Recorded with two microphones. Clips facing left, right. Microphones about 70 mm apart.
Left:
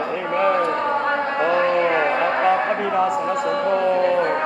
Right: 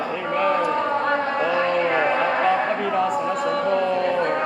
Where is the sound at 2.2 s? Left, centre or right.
Centre.